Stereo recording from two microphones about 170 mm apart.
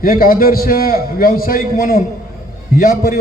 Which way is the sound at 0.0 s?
60° left (ahead or behind).